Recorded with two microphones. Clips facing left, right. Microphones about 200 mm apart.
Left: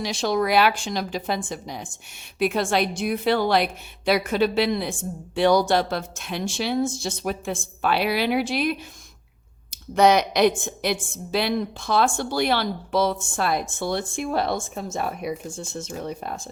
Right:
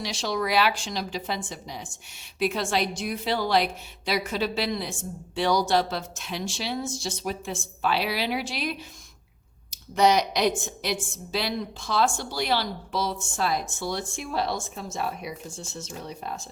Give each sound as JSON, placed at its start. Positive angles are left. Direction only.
{"t": 0.0, "sound": "a woman's voice", "side_deg": 50}
{"t": 9.9, "sound": "a woman's voice", "side_deg": 55}